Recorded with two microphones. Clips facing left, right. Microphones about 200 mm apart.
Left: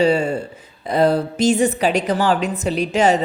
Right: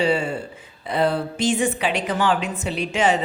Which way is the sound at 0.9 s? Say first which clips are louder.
Left 5 dB; 40° left (ahead or behind).